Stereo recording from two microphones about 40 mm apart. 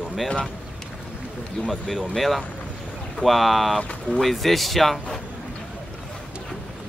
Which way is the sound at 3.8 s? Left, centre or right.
Left.